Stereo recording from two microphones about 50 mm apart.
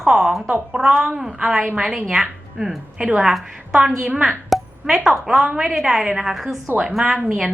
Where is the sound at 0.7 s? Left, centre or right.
Centre.